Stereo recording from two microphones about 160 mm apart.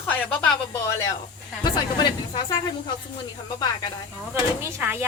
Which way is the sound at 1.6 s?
25° left (ahead or behind).